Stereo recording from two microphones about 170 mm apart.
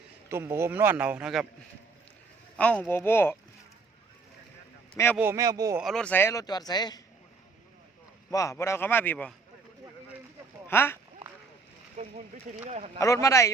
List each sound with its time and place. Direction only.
0.3 s a man's voice: 15° right (ahead or behind)
2.6 s speech: 10° left (ahead or behind)
5.1 s a man's voice: 15° right (ahead or behind)
5.8 s speech: 5° left (ahead or behind); by 7.0 s 25° left (ahead or behind)
8.3 s speech: 20° left (ahead or behind)
10.7 s speech: 15° left (ahead or behind)
12.0 s speech: 45° right (ahead or behind)
13.0 s speech: 15° left (ahead or behind)